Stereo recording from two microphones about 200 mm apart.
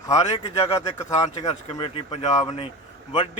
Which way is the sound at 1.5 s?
25° left (ahead or behind).